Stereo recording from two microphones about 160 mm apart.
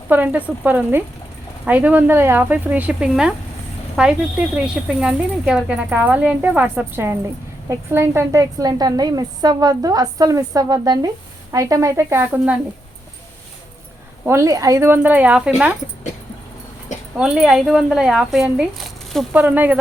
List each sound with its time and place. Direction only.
0.1 s a woman's voice: 10° right (ahead or behind)
14.3 s speech: 15° right (ahead or behind)
17.2 s speech: 5° right (ahead or behind)